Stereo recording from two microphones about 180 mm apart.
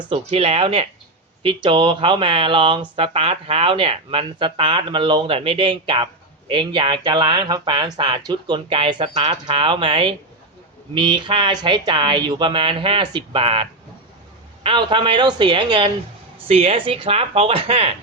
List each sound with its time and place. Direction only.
0.1 s speech: 30° right (ahead or behind)